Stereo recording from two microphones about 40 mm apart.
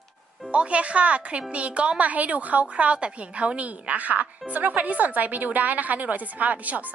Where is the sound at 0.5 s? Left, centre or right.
Right.